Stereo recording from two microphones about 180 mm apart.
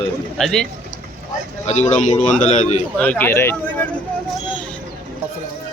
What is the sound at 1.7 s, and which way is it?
A man's voice, 40° left (ahead or behind).